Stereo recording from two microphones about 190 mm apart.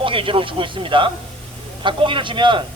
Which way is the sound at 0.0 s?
25° right (ahead or behind).